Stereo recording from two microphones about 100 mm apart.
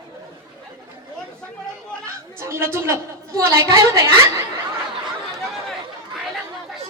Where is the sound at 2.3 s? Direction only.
25° right (ahead or behind).